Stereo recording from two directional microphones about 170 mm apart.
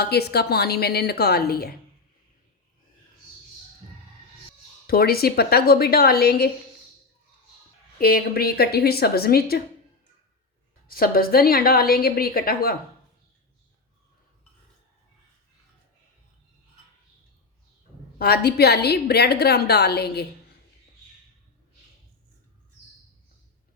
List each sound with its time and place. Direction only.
0.0 s a woman's voice: 70° left (ahead or behind)
4.9 s a woman's voice: 65° left (ahead or behind)
7.9 s a woman's voice: 60° left (ahead or behind)
10.8 s a woman's voice: 60° left (ahead or behind)
18.2 s a woman's voice: 70° left (ahead or behind)